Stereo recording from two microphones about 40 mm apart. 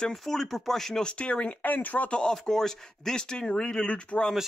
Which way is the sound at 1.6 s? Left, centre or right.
Left.